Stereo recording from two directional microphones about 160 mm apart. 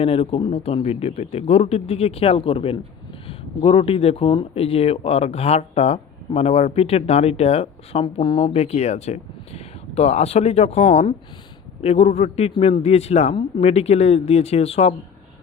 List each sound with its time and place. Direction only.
0.0 s speech: 35° left (ahead or behind)